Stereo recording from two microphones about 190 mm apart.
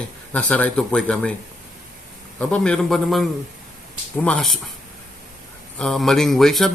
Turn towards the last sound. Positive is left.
turn(degrees=0)  # may be behind; listen again after turning